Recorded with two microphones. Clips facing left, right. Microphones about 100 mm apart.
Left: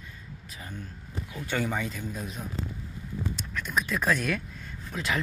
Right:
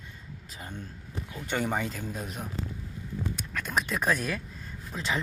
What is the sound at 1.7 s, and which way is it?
Speech, 35° right (ahead or behind).